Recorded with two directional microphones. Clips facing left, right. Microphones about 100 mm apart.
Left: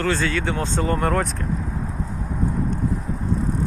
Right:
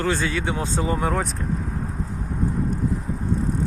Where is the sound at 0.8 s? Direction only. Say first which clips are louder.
Left 3 dB; 5° right (ahead or behind).